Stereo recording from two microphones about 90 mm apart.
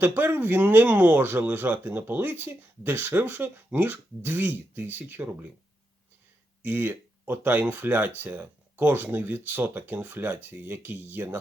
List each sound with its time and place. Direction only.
0.0 s speech: 20° right (ahead or behind)
6.6 s speech: 20° right (ahead or behind)